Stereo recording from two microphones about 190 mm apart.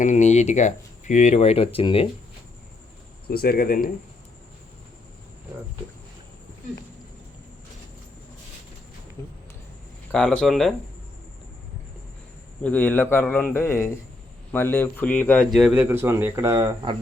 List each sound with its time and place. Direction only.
0.0 s speech: 40° left (ahead or behind)
3.2 s speech: 55° left (ahead or behind)
10.1 s speech: 5° left (ahead or behind)
12.6 s speech: 10° left (ahead or behind)
15.5 s speech: 5° right (ahead or behind)